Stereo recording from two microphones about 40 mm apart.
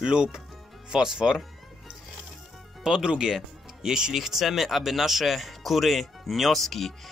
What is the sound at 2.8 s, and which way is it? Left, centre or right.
Speech, centre.